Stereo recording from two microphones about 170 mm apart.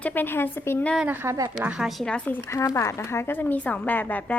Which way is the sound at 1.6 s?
5° right (ahead or behind).